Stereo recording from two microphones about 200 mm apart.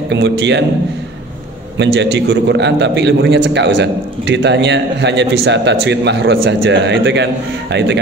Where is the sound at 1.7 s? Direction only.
55° right (ahead or behind).